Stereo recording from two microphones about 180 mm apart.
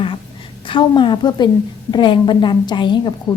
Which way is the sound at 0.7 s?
25° left (ahead or behind).